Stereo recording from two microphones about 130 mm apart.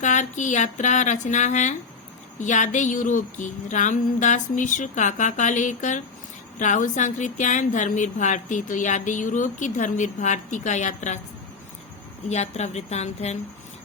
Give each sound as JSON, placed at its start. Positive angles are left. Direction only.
{"t": 0.0, "sound": "speech", "side_deg": 70}
{"t": 12.3, "sound": "a woman's voice", "side_deg": 60}